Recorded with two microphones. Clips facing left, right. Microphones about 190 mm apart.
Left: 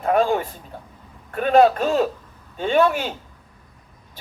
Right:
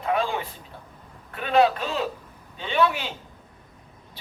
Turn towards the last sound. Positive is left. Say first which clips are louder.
# left 5 dB
turn(degrees=45)  # may be behind; listen again after turning